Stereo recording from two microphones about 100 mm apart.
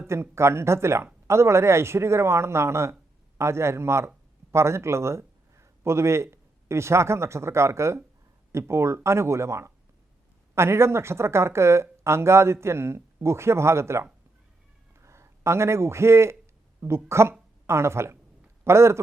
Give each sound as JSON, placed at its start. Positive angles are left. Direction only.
{"t": 0.1, "sound": "a man's voice", "side_deg": -25}